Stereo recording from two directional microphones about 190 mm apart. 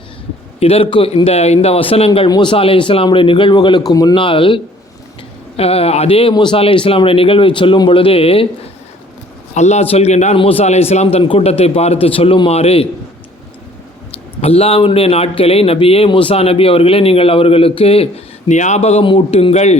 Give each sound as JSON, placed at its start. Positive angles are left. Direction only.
{"t": 0.6, "sound": "a man's voice", "side_deg": 30}
{"t": 9.6, "sound": "speech", "side_deg": 35}
{"t": 14.4, "sound": "speech", "side_deg": 30}